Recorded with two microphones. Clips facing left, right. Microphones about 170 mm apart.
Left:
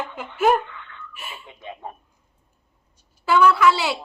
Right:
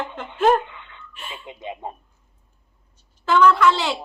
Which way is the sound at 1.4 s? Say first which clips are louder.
Right 6 dB; 20° right (ahead or behind).